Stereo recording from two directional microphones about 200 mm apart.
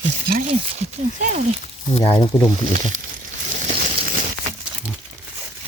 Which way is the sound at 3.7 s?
50° right (ahead or behind).